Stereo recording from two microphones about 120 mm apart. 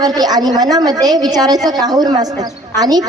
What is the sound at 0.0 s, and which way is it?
A woman's voice, 35° right (ahead or behind).